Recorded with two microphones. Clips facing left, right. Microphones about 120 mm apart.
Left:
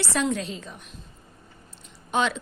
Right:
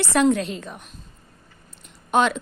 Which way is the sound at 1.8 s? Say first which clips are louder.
Right 5 dB; 55° right (ahead or behind).